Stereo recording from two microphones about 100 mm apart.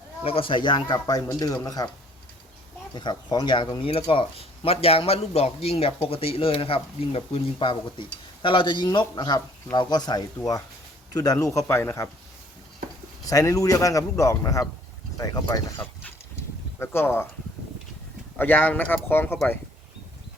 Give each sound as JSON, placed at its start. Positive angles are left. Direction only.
{"t": 0.3, "sound": "speech", "side_deg": 65}
{"t": 0.9, "sound": "a man's voice", "side_deg": 40}
{"t": 2.9, "sound": "speech", "side_deg": 50}
{"t": 3.8, "sound": "a man's voice", "side_deg": 65}
{"t": 11.5, "sound": "speech", "side_deg": 25}
{"t": 13.2, "sound": "a man's voice", "side_deg": 35}
{"t": 15.7, "sound": "a sound", "side_deg": 25}
{"t": 18.3, "sound": "speech", "side_deg": 20}